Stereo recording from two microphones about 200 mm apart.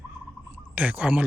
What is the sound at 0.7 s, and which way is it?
Speech, 10° right (ahead or behind).